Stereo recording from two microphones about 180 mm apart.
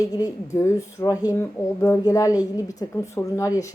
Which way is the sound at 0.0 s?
20° left (ahead or behind).